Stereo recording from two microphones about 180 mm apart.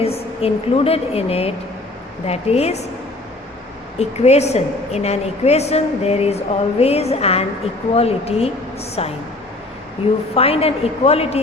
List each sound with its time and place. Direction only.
0.0 s a woman's voice: 35° left (ahead or behind)
3.9 s a woman's voice: 35° left (ahead or behind)
10.3 s a woman's voice: 35° left (ahead or behind)